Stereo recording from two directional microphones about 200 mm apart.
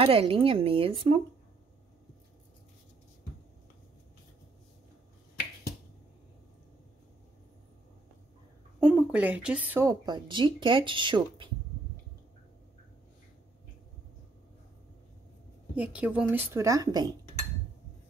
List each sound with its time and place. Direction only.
0.0 s speech: 30° right (ahead or behind)
8.7 s speech: 5° right (ahead or behind); by 11.4 s 25° right (ahead or behind)
15.7 s a woman's voice: 5° right (ahead or behind)